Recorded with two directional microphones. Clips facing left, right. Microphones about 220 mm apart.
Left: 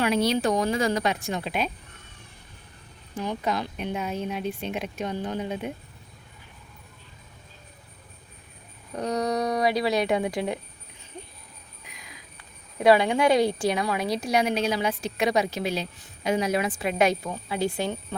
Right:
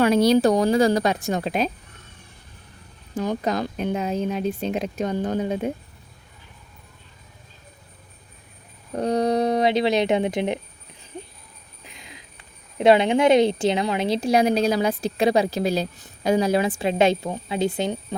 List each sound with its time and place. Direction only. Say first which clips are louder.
0.0 s speech: right 6 dB; 40° right (ahead or behind)
3.2 s speech: right 4 dB; 40° right (ahead or behind)
9.0 s a woman's voice: right 5 dB; 30° right (ahead or behind)
11.9 s a sound: right 4 dB; 25° right (ahead or behind)
12.8 s a woman's voice: right 3 dB; 20° right (ahead or behind)